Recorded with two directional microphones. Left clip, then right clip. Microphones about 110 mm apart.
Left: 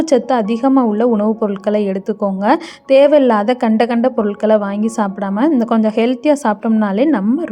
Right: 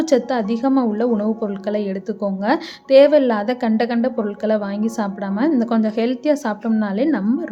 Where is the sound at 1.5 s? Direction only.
40° left (ahead or behind).